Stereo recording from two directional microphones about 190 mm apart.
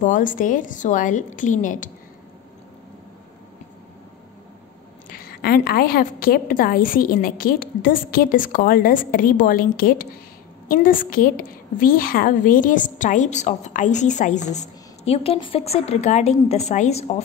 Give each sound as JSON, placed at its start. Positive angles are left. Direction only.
{"t": 0.0, "sound": "a woman's voice", "side_deg": 45}
{"t": 5.1, "sound": "a woman's voice", "side_deg": 50}